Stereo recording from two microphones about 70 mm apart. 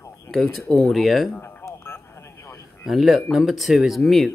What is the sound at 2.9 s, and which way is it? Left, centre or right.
Speech, centre.